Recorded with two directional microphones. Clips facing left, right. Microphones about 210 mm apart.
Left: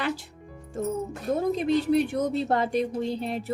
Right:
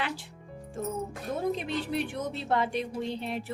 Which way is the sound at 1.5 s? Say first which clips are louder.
Left 9 dB; 40° left (ahead or behind).